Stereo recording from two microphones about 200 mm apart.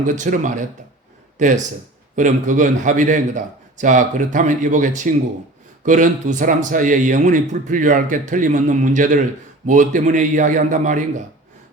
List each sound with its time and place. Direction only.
0.0 s speech: 40° right (ahead or behind)